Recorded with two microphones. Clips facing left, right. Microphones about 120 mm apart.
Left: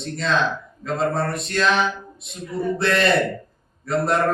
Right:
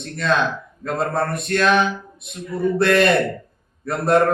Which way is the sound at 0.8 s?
55° right (ahead or behind).